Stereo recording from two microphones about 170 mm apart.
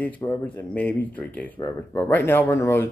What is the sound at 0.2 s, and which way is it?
Speech, 15° left (ahead or behind).